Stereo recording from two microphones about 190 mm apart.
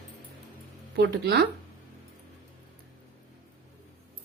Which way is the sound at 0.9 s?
60° right (ahead or behind).